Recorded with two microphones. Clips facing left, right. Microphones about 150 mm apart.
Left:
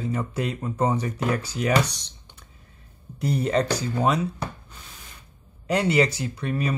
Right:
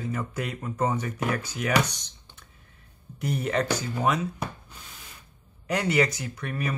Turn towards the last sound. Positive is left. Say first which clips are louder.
# left 5 dB
turn(degrees=25)  # may be behind; listen again after turning